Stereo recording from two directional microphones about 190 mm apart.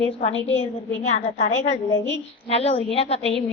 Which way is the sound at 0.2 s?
35° left (ahead or behind).